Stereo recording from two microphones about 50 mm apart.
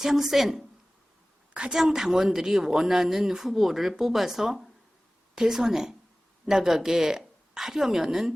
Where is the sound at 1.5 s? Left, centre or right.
Right.